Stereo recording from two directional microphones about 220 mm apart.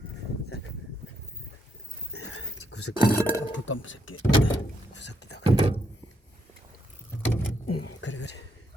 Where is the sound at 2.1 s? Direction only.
80° left.